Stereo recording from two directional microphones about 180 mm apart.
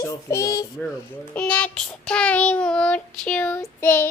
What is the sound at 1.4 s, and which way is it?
Child singing, 5° left (ahead or behind).